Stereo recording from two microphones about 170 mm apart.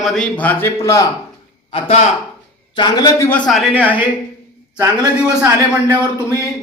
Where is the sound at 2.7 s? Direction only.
25° left (ahead or behind); by 4.0 s 10° right (ahead or behind).